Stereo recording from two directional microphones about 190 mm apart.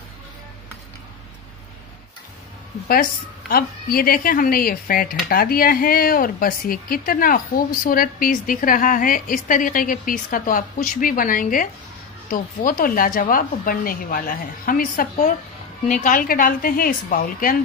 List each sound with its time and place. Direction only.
2.9 s speech: 50° left (ahead or behind)